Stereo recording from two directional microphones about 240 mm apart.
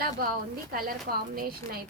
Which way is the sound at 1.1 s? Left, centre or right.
Right.